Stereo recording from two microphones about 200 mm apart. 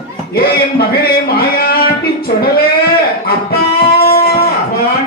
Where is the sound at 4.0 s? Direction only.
50° left (ahead or behind).